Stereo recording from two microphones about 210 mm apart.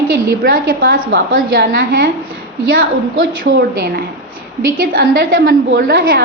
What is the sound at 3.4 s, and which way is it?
A woman's voice, 50° right (ahead or behind).